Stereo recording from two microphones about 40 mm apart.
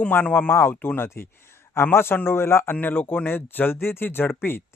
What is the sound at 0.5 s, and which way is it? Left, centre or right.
Speech, left.